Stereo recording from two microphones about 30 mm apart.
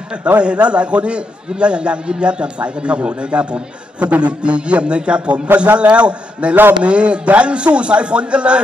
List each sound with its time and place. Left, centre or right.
0.4 s a man's voice: right